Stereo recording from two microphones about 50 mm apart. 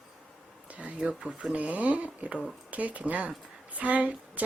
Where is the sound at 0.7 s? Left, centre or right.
Right.